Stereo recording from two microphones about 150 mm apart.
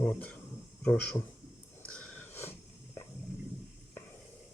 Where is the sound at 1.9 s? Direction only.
5° left (ahead or behind).